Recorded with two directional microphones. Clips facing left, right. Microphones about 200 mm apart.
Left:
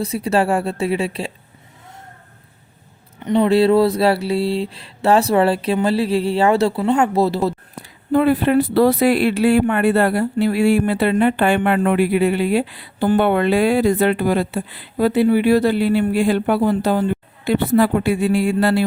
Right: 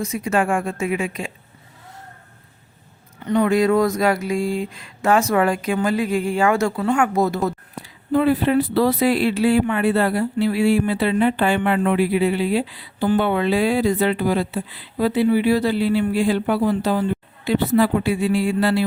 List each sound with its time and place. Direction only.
0.0 s speech: 35° left (ahead or behind)
3.2 s speech: 20° left (ahead or behind)
8.1 s speech: 60° left (ahead or behind)